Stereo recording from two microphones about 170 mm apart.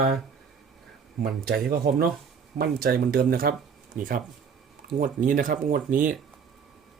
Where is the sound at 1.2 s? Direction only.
65° right (ahead or behind).